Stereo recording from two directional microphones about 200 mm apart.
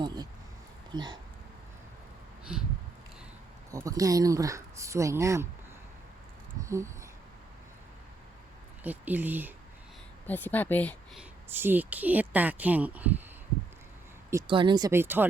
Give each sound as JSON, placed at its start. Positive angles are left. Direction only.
{"t": 0.0, "sound": "a sound", "side_deg": -20}
{"t": 0.9, "sound": "speech", "side_deg": -20}
{"t": 2.4, "sound": "a sound", "side_deg": -5}
{"t": 3.7, "sound": "speech", "side_deg": -15}
{"t": 6.7, "sound": "a sound", "side_deg": -15}
{"t": 8.8, "sound": "speech", "side_deg": -10}
{"t": 10.2, "sound": "speech", "side_deg": 10}
{"t": 11.2, "sound": "speech", "side_deg": -10}
{"t": 14.3, "sound": "speech", "side_deg": -20}